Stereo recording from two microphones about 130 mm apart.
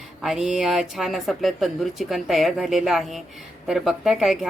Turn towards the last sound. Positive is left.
turn(degrees=0)  # may be behind; listen again after turning